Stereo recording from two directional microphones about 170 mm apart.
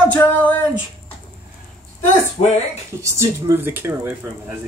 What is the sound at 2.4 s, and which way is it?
Speech, 35° left (ahead or behind).